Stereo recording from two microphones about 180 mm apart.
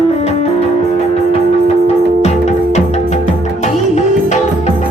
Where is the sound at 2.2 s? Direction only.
40° left (ahead or behind).